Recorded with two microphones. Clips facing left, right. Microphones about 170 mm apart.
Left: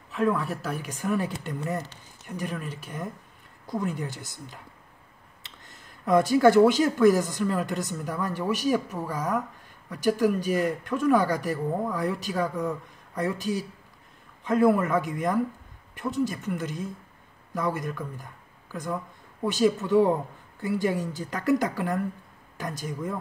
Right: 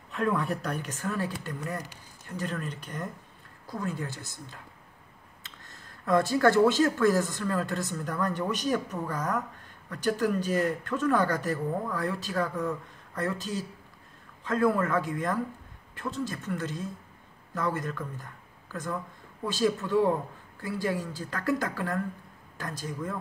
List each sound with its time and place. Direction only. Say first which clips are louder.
0.1 s speech: left 2 dB; centre (ahead or behind)
6.0 s speech: left 4 dB; 15° left (ahead or behind)